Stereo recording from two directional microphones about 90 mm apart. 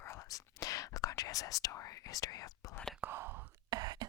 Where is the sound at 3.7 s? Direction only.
50° right (ahead or behind).